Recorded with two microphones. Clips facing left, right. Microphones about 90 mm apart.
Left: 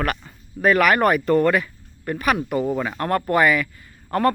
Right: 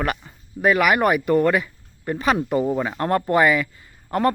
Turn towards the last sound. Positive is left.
turn(degrees=-20)  # may be behind; listen again after turning